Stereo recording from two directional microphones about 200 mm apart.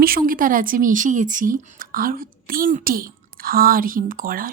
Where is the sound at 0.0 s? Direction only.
45° right (ahead or behind).